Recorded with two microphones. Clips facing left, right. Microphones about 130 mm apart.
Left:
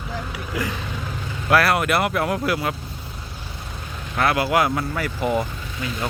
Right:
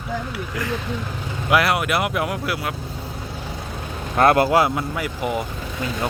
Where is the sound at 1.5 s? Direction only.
15° right (ahead or behind).